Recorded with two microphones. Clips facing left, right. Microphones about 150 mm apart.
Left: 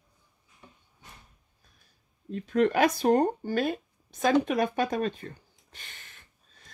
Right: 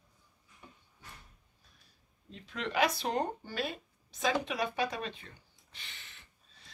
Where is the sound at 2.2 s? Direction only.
50° left (ahead or behind).